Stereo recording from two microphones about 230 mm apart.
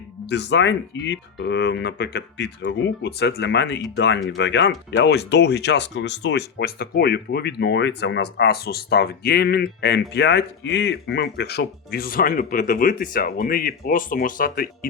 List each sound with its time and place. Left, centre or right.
0.3 s speech: left